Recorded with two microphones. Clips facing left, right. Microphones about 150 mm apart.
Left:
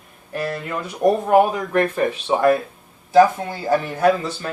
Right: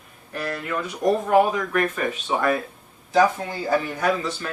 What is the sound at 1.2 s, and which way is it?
Speech, 30° left (ahead or behind).